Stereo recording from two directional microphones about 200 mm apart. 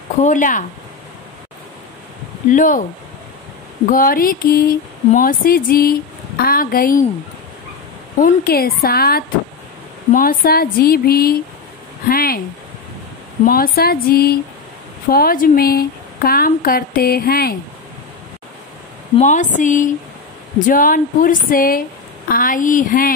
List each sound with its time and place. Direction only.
0.2 s speech: 40° left (ahead or behind)
2.5 s speech: 40° left (ahead or behind)
3.8 s speech: 45° left (ahead or behind)
8.2 s speech: 50° left (ahead or behind)
13.5 s speech: 50° left (ahead or behind)
19.1 s speech: 40° left (ahead or behind)